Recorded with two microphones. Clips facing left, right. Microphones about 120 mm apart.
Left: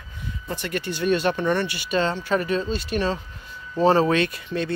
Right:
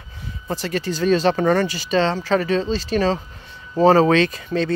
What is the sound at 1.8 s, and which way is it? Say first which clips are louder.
Speech: right 3 dB; 90° right.